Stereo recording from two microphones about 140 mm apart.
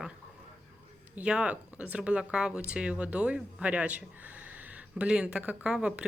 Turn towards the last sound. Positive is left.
turn(degrees=-5)  # may be behind; listen again after turning